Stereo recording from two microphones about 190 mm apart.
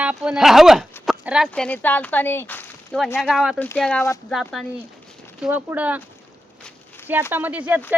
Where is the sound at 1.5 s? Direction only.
5° left (ahead or behind).